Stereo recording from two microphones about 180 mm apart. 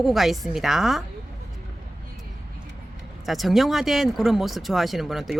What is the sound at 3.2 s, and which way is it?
Speech, centre (ahead or behind).